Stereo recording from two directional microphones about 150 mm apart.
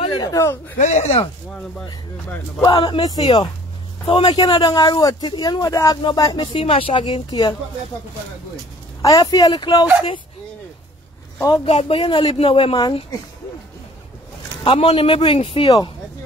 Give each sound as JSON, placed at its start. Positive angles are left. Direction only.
{"t": 0.2, "sound": "speech", "side_deg": 20}
{"t": 0.7, "sound": "speech", "side_deg": 50}
{"t": 2.6, "sound": "speech", "side_deg": 30}
{"t": 9.0, "sound": "speech", "side_deg": 25}
{"t": 11.3, "sound": "speech", "side_deg": 20}
{"t": 11.6, "sound": "speech", "side_deg": 40}
{"t": 14.6, "sound": "speech", "side_deg": 40}